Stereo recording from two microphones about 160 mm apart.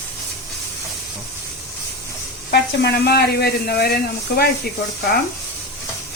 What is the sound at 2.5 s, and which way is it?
Speech, 90° left.